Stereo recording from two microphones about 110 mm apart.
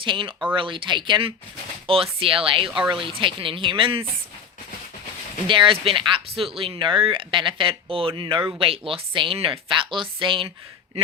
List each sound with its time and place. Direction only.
0.0 s speech: 50° right (ahead or behind)
5.5 s speech: 50° right (ahead or behind)